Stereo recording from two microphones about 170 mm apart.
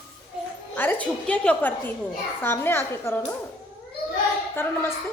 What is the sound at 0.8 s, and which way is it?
A child's voice, 10° left (ahead or behind).